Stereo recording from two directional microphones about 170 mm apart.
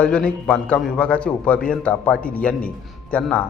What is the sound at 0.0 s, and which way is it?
A man's voice, 5° left (ahead or behind).